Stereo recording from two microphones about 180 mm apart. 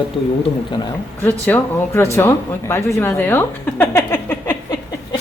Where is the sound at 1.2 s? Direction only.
10° left (ahead or behind).